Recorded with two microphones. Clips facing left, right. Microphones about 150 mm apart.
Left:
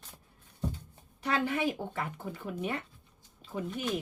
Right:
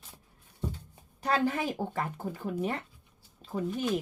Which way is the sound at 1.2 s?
40° right (ahead or behind).